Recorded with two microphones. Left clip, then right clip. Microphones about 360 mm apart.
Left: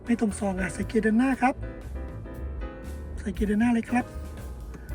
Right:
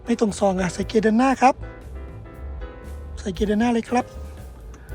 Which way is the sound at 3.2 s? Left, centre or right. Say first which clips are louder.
Right 5 dB; centre.